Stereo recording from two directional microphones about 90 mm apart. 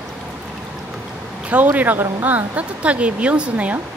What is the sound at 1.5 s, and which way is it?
Speech, 20° right (ahead or behind).